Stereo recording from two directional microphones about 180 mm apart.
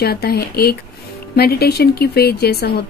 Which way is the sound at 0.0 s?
60° left (ahead or behind).